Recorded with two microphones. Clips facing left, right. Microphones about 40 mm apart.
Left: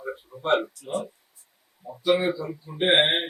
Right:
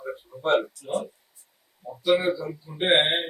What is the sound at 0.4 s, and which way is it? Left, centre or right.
A man's voice, centre.